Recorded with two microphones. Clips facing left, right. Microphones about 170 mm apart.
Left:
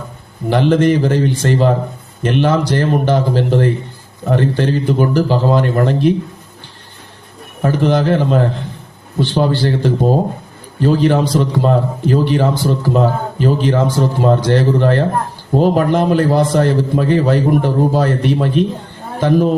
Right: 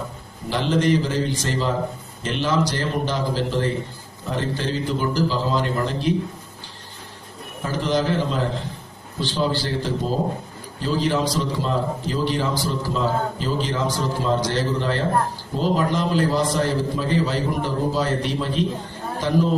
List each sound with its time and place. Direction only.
0.5 s a man's voice: 60° left (ahead or behind)
7.6 s a man's voice: 60° left (ahead or behind)